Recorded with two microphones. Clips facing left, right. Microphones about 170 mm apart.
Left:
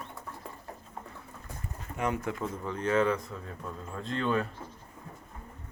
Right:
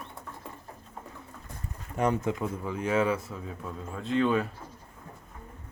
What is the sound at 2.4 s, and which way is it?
Speech, 10° right (ahead or behind).